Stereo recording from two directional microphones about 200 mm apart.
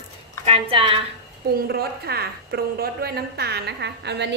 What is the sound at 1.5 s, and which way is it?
A woman's voice, 50° right (ahead or behind).